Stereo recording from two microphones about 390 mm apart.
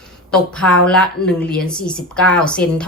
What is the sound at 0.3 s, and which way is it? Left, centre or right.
A woman's voice, centre.